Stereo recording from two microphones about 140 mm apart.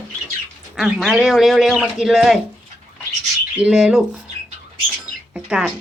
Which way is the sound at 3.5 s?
5° right (ahead or behind).